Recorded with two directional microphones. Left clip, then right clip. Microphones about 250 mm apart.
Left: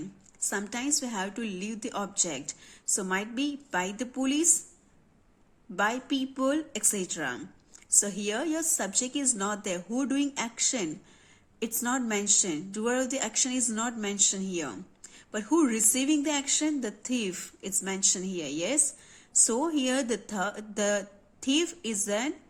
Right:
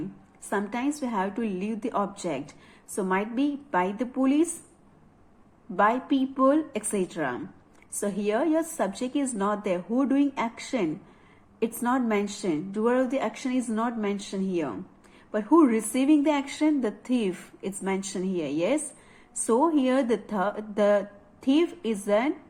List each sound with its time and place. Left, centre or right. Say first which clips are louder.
0.5 s a woman's voice: right 4 dB; left
5.7 s a woman's voice: right 5 dB; left